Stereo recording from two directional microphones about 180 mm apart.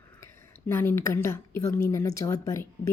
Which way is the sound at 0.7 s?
15° left (ahead or behind).